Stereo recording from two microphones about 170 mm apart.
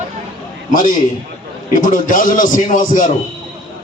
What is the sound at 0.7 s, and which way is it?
A man's voice, 55° left (ahead or behind).